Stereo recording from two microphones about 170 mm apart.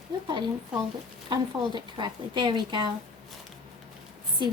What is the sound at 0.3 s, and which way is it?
A woman's voice, 25° right (ahead or behind).